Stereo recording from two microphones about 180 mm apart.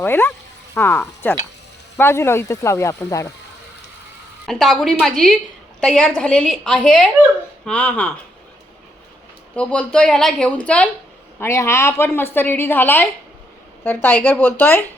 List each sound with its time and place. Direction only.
0.0 s a woman's voice: 10° left (ahead or behind)
4.4 s a woman's voice: centre (ahead or behind)
9.6 s a woman's voice: 5° left (ahead or behind)